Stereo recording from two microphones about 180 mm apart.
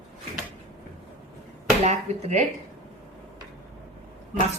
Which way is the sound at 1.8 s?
40° right (ahead or behind).